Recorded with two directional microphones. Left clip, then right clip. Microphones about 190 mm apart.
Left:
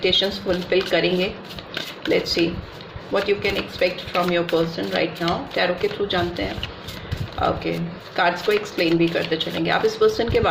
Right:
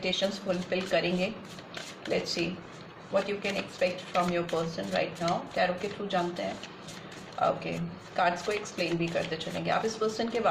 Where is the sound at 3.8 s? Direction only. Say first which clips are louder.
Left 5 dB; 40° left (ahead or behind).